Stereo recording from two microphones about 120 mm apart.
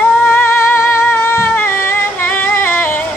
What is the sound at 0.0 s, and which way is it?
Singing, 15° left (ahead or behind).